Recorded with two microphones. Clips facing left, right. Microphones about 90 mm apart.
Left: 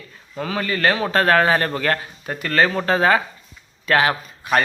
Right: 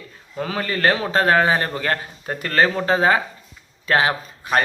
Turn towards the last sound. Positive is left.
turn(degrees=-30)  # may be behind; listen again after turning